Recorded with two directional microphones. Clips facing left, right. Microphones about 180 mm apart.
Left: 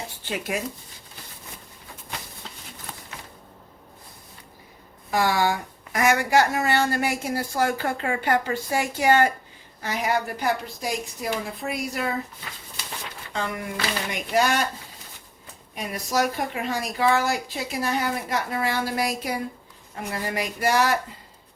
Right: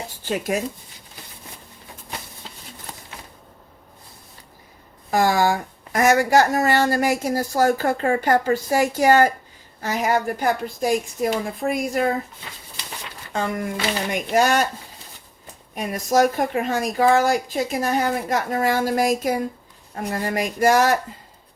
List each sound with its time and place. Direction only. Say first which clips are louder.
0.3 s speech: right 5 dB; 40° right (ahead or behind)
5.1 s speech: right 4 dB; 45° right (ahead or behind)
13.3 s speech: right 5 dB; 45° right (ahead or behind)
15.7 s speech: right 6 dB; 45° right (ahead or behind)